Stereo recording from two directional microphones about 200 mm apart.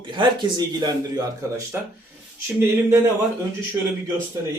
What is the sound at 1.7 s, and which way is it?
Speech, 10° right (ahead or behind).